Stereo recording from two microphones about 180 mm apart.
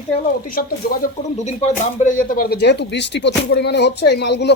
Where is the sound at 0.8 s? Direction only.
60° left (ahead or behind).